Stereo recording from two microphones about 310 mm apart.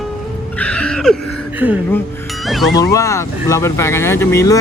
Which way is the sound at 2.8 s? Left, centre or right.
Centre.